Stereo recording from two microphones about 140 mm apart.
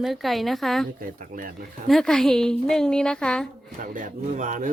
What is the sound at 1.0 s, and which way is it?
Speech, 75° right (ahead or behind).